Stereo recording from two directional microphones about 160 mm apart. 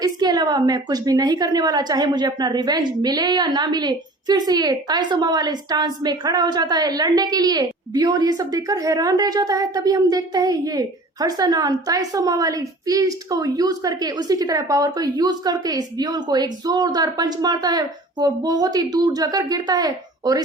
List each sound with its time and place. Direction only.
0.0 s a woman's voice: 25° right (ahead or behind)